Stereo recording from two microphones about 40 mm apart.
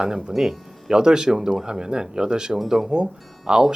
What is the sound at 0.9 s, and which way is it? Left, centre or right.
Speech, centre.